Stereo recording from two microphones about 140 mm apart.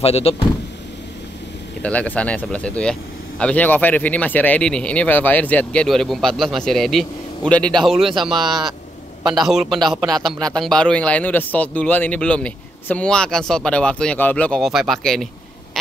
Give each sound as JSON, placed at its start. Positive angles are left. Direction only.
{"t": 0.0, "sound": "speech", "side_deg": 45}
{"t": 1.8, "sound": "speech", "side_deg": 10}
{"t": 8.4, "sound": "speech", "side_deg": -30}
{"t": 9.3, "sound": "a man's voice", "side_deg": 0}